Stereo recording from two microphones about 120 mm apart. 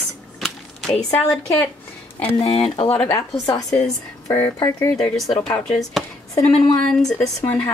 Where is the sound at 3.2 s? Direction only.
30° left (ahead or behind).